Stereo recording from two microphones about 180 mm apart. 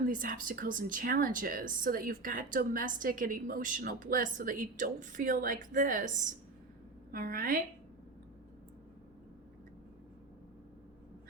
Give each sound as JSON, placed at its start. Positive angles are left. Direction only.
{"t": 0.0, "sound": "a woman's voice", "side_deg": -50}